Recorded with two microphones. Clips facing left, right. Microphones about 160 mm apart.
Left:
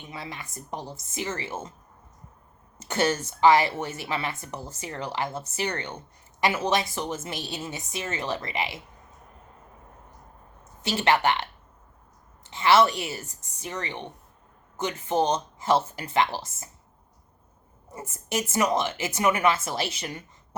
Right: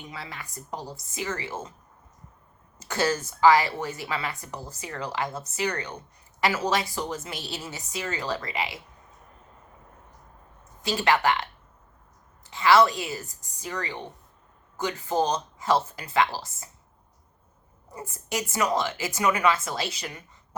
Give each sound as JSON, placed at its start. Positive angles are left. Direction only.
{"t": 0.1, "sound": "speech", "side_deg": 20}
{"t": 2.8, "sound": "speech", "side_deg": 25}
{"t": 10.8, "sound": "speech", "side_deg": 25}
{"t": 12.5, "sound": "a woman's voice", "side_deg": 25}
{"t": 17.9, "sound": "speech", "side_deg": 25}